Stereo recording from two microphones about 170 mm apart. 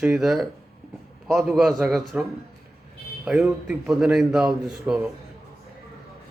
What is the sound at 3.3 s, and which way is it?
A man's voice, 5° right (ahead or behind).